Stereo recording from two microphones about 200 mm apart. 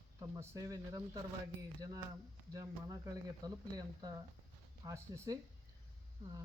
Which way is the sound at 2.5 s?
15° right (ahead or behind).